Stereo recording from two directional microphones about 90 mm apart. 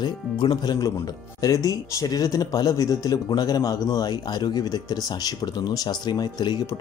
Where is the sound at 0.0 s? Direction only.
55° left (ahead or behind).